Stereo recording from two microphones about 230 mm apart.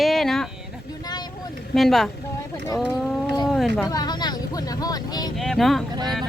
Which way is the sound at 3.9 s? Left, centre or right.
Centre.